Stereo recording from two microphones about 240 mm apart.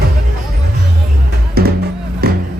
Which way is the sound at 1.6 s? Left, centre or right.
Right.